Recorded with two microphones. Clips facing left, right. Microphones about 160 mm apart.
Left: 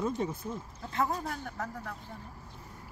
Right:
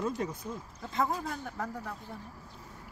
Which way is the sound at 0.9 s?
Centre (ahead or behind).